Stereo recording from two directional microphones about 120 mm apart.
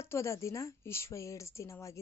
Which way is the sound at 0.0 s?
20° left (ahead or behind).